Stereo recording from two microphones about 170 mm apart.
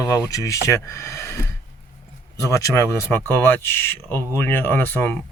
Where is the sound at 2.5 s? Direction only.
15° left (ahead or behind).